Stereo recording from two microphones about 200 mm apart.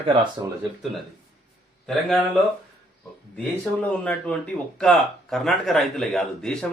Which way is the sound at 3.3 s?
5° left (ahead or behind).